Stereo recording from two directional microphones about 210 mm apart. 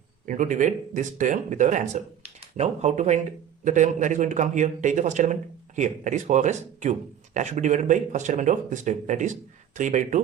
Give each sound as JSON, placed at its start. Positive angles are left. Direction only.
{"t": 0.3, "sound": "a man's voice", "side_deg": -35}